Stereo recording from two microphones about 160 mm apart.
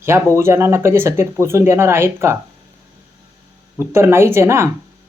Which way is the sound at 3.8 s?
15° right (ahead or behind).